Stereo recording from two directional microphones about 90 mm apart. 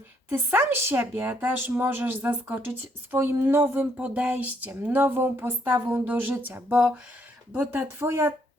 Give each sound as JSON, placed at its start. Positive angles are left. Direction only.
{"t": 0.3, "sound": "speech", "side_deg": -25}